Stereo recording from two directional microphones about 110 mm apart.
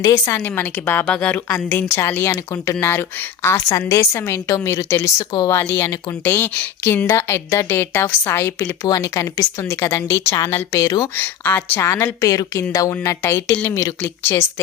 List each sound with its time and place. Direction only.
0.0 s a woman's voice: 25° left (ahead or behind)
11.1 s a woman's voice: 20° left (ahead or behind)